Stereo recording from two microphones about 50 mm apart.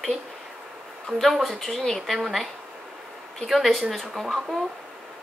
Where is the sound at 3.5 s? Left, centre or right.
Centre.